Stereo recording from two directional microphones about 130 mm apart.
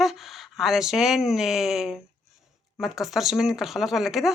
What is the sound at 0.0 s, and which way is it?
A woman's voice, centre (ahead or behind).